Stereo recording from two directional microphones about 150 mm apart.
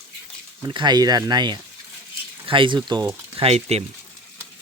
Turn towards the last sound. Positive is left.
turn(degrees=-40)  # may be behind; listen again after turning